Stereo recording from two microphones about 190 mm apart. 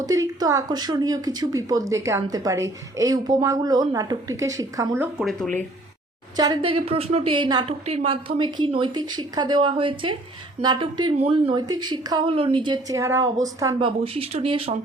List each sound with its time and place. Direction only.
0.0 s a woman's voice: 20° right (ahead or behind)
5.2 s speech: 5° left (ahead or behind)
6.3 s a woman's voice: 20° right (ahead or behind)
13.7 s a woman's voice: 30° right (ahead or behind)